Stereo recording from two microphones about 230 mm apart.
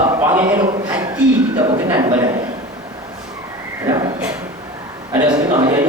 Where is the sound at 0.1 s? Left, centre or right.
Centre.